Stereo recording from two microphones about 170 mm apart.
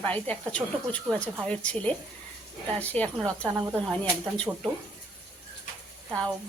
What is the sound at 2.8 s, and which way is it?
Speech, 10° left (ahead or behind).